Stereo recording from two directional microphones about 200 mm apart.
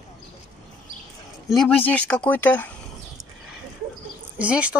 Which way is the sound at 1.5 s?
5° left (ahead or behind).